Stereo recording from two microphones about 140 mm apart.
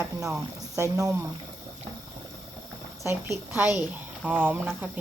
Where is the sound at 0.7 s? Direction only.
20° right (ahead or behind).